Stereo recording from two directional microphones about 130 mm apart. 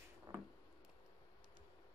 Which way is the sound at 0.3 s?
30° right (ahead or behind).